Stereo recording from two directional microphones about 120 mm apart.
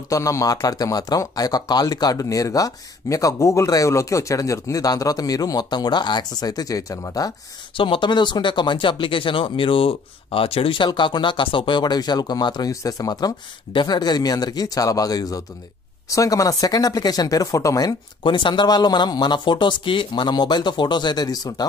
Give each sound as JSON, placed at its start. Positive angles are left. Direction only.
{"t": 0.1, "sound": "speech", "side_deg": 25}
{"t": 7.7, "sound": "speech", "side_deg": 45}